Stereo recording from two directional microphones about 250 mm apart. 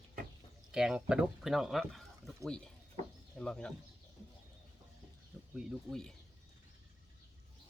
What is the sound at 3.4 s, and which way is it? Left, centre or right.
Speech, centre.